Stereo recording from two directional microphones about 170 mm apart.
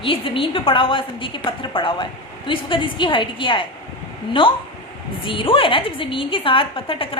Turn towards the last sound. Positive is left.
turn(degrees=30)  # may be behind; listen again after turning